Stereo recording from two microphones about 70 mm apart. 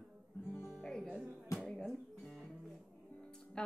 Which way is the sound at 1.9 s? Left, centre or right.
Centre.